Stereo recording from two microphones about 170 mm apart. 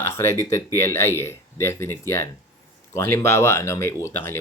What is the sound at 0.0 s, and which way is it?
Speech, 15° left (ahead or behind).